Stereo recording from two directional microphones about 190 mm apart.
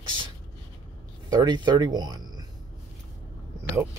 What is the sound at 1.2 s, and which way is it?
Speech, 20° right (ahead or behind).